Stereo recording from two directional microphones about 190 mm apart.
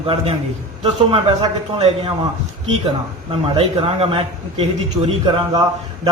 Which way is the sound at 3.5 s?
30° right (ahead or behind).